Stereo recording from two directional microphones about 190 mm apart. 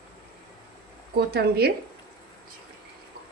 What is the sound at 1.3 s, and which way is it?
Speech, 55° right (ahead or behind).